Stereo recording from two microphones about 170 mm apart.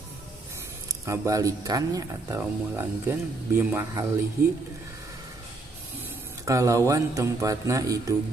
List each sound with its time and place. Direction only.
1.0 s speech: 20° right (ahead or behind)
6.4 s speech: 20° right (ahead or behind)